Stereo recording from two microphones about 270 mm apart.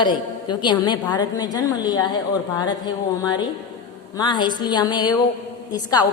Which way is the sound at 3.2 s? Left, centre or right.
Centre.